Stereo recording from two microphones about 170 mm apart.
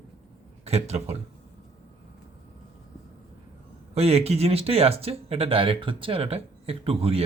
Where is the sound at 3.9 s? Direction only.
35° right (ahead or behind).